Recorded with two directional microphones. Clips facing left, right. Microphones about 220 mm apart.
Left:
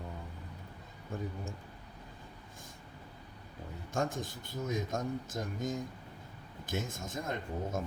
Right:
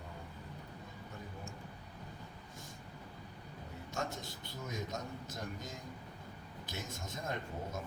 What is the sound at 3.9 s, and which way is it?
Speech, 50° left (ahead or behind).